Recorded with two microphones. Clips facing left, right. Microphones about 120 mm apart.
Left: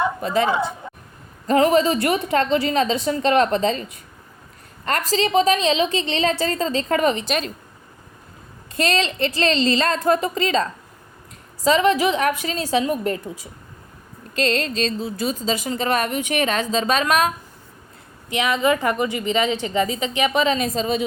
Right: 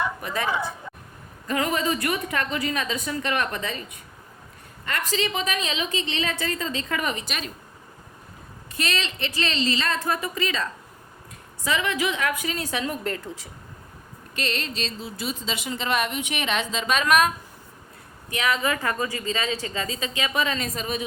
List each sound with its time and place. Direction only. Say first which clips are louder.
0.0 s a woman's voice: left 7 dB; 25° left (ahead or behind)
5.0 s speech: left 10 dB; 35° left (ahead or behind)
8.8 s speech: left 8 dB; 40° left (ahead or behind)
11.8 s a woman's voice: left 8 dB; 30° left (ahead or behind)
14.8 s speech: left 8 dB; 40° left (ahead or behind)
18.3 s a woman's voice: left 5 dB; 20° left (ahead or behind)